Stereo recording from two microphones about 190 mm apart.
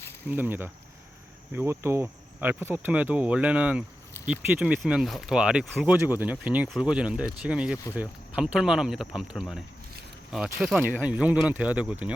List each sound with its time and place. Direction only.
0.3 s speech: 10° right (ahead or behind)